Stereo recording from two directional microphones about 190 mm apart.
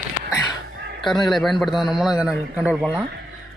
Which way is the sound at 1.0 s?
Centre (ahead or behind).